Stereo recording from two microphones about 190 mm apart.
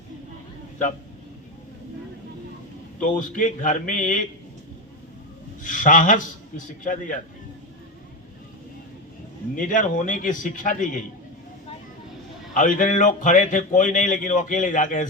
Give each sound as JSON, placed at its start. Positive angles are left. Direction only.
{"t": 3.0, "sound": "speech", "side_deg": 45}
{"t": 5.6, "sound": "speech", "side_deg": 45}
{"t": 9.6, "sound": "speech", "side_deg": 45}
{"t": 12.5, "sound": "speech", "side_deg": 45}